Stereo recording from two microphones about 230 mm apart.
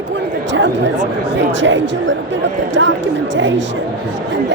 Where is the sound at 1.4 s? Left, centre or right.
Right.